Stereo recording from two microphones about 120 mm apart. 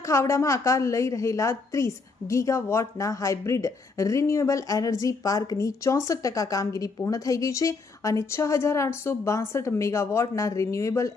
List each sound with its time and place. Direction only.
0.0 s a woman's voice: 25° left (ahead or behind)